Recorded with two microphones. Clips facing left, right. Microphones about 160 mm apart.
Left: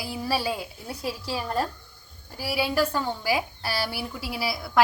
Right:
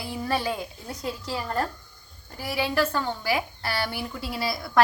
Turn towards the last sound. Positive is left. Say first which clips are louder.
# right 1 dB
turn(degrees=5)  # may be behind; listen again after turning